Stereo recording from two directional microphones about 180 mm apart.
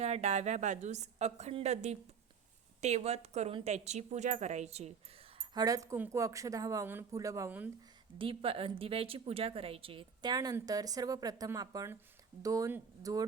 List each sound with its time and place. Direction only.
0.0 s a woman's voice: 40° right (ahead or behind)
5.4 s speech: 20° right (ahead or behind)
8.2 s a woman's voice: 30° right (ahead or behind)